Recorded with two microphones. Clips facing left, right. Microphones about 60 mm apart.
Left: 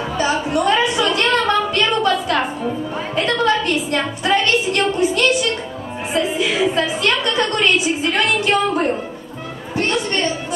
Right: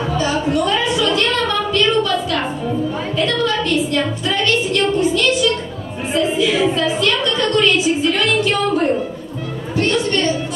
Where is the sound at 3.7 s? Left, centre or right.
Centre.